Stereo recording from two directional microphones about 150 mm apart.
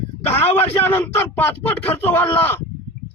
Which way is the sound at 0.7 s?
15° left (ahead or behind).